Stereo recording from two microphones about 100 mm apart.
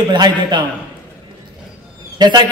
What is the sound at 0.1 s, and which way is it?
Speech, 50° right (ahead or behind).